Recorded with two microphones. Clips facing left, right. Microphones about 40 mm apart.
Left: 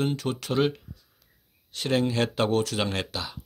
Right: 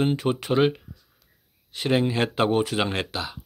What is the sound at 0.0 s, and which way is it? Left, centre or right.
Speech, right.